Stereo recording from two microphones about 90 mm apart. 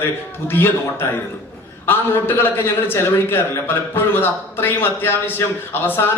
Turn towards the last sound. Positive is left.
turn(degrees=25)  # may be behind; listen again after turning